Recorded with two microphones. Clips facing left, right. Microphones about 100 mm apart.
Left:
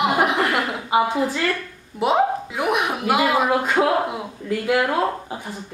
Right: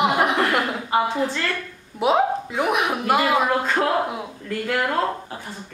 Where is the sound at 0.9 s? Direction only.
15° left (ahead or behind).